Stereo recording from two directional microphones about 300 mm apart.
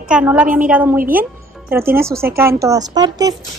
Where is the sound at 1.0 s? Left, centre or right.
Right.